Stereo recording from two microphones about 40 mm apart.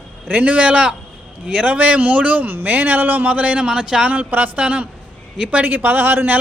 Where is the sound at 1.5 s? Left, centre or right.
Right.